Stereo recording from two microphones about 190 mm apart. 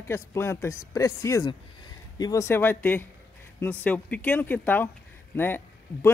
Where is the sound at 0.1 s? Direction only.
15° left (ahead or behind).